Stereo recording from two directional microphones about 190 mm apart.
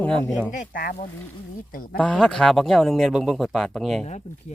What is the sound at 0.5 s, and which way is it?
Speech, 45° left (ahead or behind).